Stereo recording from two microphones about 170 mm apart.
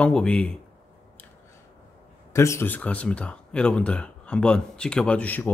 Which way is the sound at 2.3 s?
15° left (ahead or behind).